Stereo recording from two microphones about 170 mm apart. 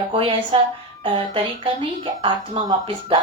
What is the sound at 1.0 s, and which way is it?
A woman's voice, 30° right (ahead or behind).